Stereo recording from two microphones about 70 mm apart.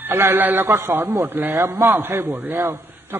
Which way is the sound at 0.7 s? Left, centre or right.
Right.